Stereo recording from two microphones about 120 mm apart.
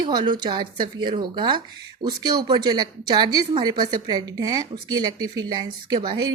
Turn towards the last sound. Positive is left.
turn(degrees=-40)  # may be behind; listen again after turning